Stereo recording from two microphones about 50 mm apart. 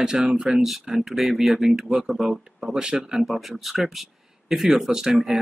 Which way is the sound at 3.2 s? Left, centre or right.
Centre.